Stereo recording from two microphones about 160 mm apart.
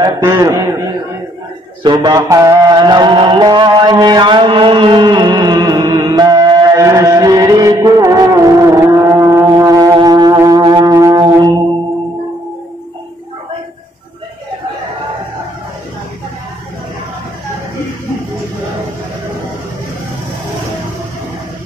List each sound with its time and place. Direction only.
0.0 s a man's voice: 20° right (ahead or behind)
1.8 s a sound: 25° right (ahead or behind)
9.6 s music: 20° right (ahead or behind)